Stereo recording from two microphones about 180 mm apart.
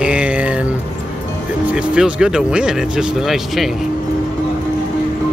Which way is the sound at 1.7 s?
5° right (ahead or behind).